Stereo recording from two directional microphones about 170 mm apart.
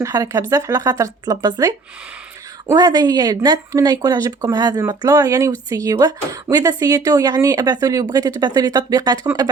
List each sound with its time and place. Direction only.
0.0 s speech: 20° right (ahead or behind)